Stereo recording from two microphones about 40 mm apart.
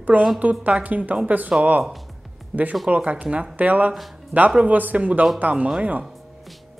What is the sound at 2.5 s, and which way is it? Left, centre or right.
Speech, right.